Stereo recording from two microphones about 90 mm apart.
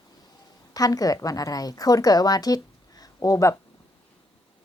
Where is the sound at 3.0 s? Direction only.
40° left (ahead or behind).